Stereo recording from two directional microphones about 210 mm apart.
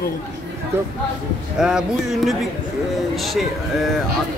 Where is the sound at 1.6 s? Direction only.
Centre (ahead or behind).